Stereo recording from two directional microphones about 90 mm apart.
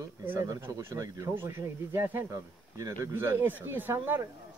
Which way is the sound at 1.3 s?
25° right (ahead or behind).